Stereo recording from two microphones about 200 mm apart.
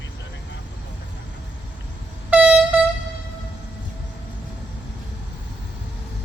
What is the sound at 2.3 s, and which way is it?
Vehicle, 5° right (ahead or behind).